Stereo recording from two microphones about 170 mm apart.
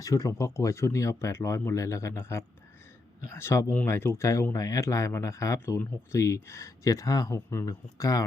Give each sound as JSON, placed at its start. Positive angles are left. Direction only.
{"t": 0.0, "sound": "speech", "side_deg": 20}